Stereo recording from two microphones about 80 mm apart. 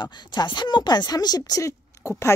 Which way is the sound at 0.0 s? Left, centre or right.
Left.